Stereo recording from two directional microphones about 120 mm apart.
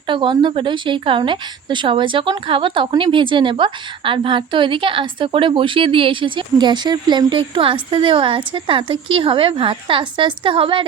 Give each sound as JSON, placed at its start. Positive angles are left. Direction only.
{"t": 0.1, "sound": "a woman's voice", "side_deg": -45}